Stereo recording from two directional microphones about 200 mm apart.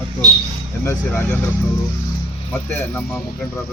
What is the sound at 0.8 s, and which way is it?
Speech, 10° left (ahead or behind).